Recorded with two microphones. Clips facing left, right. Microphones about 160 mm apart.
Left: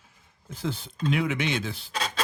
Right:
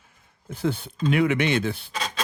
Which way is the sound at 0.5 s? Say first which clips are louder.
Right 6 dB; 60° right (ahead or behind).